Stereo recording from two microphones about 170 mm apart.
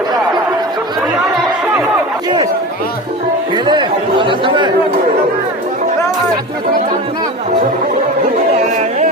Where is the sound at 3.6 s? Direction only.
30° right (ahead or behind).